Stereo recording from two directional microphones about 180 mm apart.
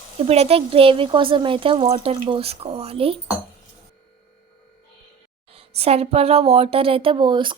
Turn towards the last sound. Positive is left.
turn(degrees=-25)  # may be behind; listen again after turning